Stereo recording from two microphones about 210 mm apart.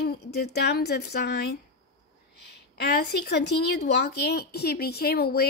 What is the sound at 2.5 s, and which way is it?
A woman's voice, 50° left (ahead or behind).